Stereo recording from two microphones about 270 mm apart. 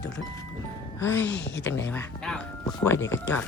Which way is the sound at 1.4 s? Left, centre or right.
Left.